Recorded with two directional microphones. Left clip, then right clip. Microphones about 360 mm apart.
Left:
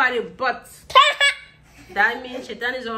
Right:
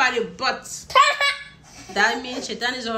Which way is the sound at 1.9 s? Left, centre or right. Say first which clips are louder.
Even; centre.